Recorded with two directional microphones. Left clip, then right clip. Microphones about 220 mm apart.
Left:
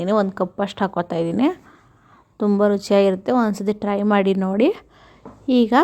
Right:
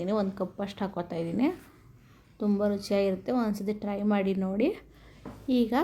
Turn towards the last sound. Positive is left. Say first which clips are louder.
# left 10 dB
turn(degrees=30)  # may be behind; listen again after turning